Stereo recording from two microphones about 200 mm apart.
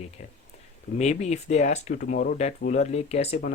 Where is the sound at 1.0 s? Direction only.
35° left (ahead or behind).